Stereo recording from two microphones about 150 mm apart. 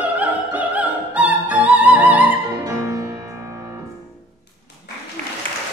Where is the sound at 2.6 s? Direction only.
20° right (ahead or behind).